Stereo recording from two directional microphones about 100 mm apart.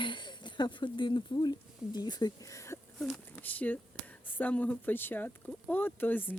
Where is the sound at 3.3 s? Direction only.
15° left (ahead or behind).